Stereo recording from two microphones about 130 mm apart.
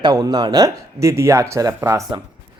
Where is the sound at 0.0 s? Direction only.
30° right (ahead or behind).